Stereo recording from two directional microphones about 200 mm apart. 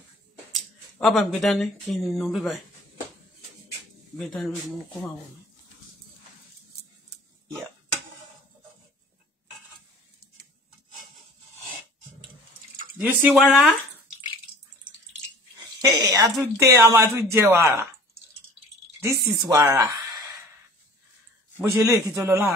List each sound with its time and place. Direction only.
0.5 s speech: centre (ahead or behind)
4.3 s speech: centre (ahead or behind)
13.0 s speech: centre (ahead or behind)
15.8 s speech: 15° right (ahead or behind)
19.2 s speech: 20° right (ahead or behind)
21.5 s speech: 10° right (ahead or behind)